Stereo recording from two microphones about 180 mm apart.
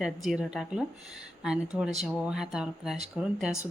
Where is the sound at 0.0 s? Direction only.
Centre (ahead or behind).